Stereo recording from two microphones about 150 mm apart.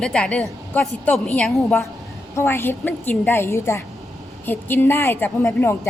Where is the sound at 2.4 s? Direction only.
15° left (ahead or behind).